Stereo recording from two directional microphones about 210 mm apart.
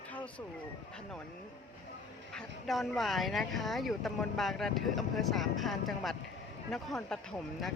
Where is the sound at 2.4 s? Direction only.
Centre (ahead or behind).